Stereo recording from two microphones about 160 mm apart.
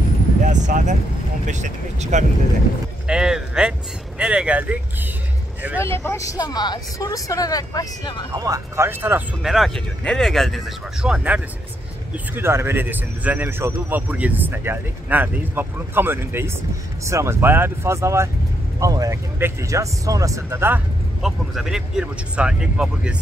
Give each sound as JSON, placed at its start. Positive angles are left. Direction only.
{"t": 0.4, "sound": "a sound", "side_deg": -50}
{"t": 1.5, "sound": "speech", "side_deg": -50}
{"t": 3.1, "sound": "a sound", "side_deg": -5}
{"t": 4.2, "sound": "a man's voice", "side_deg": -5}
{"t": 5.8, "sound": "speech", "side_deg": 15}
{"t": 8.3, "sound": "a man's voice", "side_deg": -20}
{"t": 9.4, "sound": "a man's voice", "side_deg": 0}
{"t": 21.2, "sound": "speech", "side_deg": 0}